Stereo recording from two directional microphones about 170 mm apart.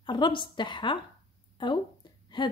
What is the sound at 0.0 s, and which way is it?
A woman's voice, 25° left (ahead or behind).